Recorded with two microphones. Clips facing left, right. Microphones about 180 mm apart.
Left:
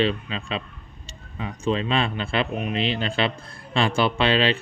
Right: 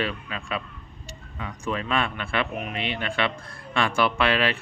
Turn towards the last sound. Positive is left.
turn(degrees=25)  # may be behind; listen again after turning